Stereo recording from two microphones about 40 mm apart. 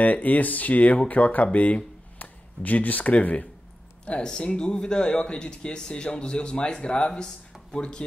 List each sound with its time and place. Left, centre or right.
0.0 s speech: left